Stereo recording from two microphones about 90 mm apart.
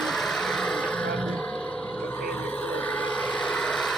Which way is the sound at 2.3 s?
15° left (ahead or behind).